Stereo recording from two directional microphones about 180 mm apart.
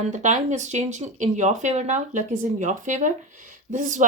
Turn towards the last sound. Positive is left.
turn(degrees=-45)  # may be behind; listen again after turning